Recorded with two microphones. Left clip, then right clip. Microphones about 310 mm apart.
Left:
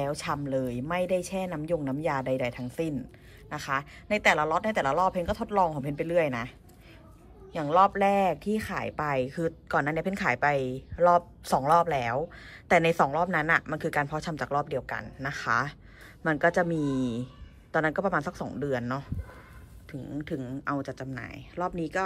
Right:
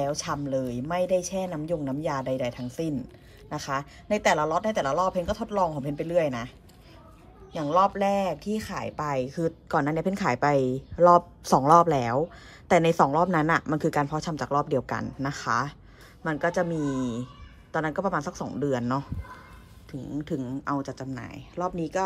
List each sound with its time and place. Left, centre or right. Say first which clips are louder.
0.0 s speech: right 2 dB; centre
7.5 s speech: even; centre